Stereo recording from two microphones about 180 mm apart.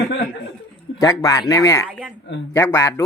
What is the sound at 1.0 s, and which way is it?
Speech, 20° left (ahead or behind).